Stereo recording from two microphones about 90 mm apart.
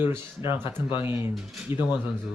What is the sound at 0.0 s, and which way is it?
Speech, 25° right (ahead or behind).